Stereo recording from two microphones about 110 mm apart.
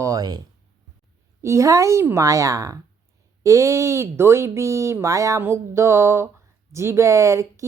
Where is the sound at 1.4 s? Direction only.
25° right (ahead or behind).